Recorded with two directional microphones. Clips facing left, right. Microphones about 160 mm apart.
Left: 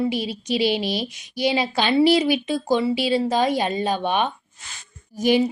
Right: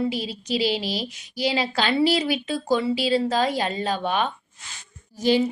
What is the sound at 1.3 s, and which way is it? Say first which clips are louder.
A woman's voice: left 2 dB; 20° left (ahead or behind).